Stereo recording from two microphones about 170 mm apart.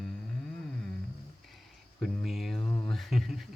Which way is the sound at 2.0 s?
Centre (ahead or behind).